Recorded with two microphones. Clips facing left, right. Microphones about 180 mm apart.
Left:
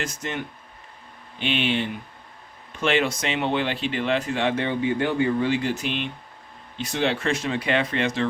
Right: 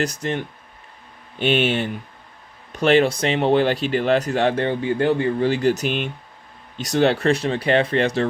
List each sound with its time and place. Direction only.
0.0 s speech: 35° right (ahead or behind)
1.4 s speech: 45° right (ahead or behind)